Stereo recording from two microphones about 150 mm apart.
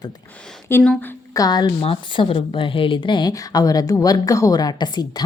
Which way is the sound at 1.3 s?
25° left (ahead or behind).